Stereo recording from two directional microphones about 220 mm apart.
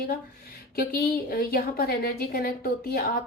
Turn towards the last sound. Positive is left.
turn(degrees=40)  # may be behind; listen again after turning